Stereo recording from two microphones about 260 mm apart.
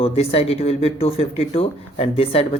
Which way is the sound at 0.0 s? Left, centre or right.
Left.